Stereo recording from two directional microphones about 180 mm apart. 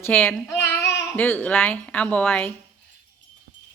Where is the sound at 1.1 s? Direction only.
10° left (ahead or behind).